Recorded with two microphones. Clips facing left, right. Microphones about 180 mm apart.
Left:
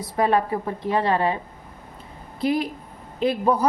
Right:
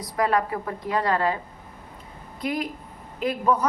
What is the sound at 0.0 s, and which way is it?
A woman's voice, 25° left (ahead or behind).